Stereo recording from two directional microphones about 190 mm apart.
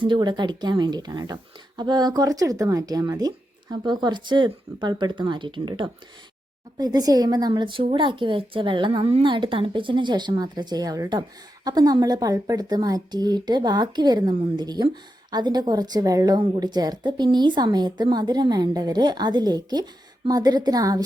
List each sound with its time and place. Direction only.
0.0 s a woman's voice: 25° right (ahead or behind)